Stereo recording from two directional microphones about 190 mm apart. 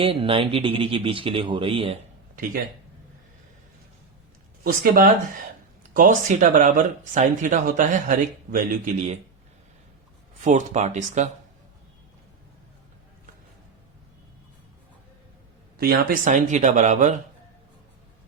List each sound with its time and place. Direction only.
0.0 s speech: 30° right (ahead or behind)
4.6 s speech: 45° right (ahead or behind)
10.4 s speech: 40° right (ahead or behind)
15.8 s speech: 50° right (ahead or behind)